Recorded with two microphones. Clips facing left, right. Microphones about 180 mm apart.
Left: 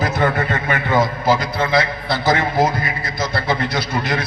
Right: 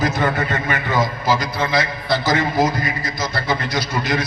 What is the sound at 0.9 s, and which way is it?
A man's voice, 55° left (ahead or behind).